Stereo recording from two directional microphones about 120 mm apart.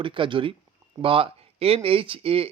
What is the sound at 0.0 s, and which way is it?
Speech, 45° right (ahead or behind).